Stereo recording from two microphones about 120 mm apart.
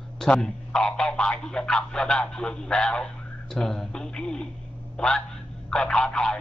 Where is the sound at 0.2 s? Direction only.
5° left (ahead or behind).